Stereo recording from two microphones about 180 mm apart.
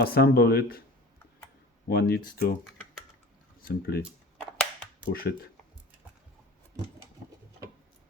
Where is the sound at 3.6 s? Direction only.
55° left (ahead or behind).